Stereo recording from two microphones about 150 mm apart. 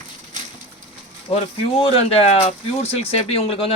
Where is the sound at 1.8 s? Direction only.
40° left (ahead or behind).